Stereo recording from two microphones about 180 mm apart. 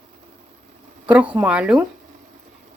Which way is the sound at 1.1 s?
5° right (ahead or behind).